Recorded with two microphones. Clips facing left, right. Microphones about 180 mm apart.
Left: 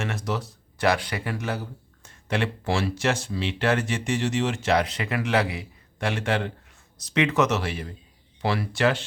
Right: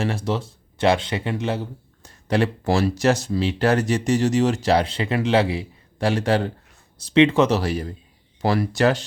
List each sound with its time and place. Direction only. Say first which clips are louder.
0.0 s speech: right 5 dB; 30° right (ahead or behind)